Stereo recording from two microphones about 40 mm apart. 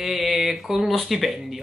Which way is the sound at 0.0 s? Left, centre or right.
Centre.